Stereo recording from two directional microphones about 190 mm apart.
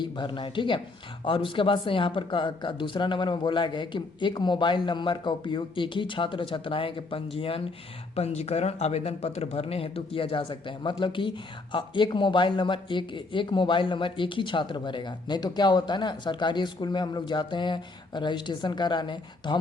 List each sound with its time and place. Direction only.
0.0 s speech: 25° left (ahead or behind)